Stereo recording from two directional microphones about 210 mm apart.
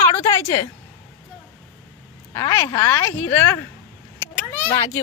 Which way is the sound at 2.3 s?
15° left (ahead or behind).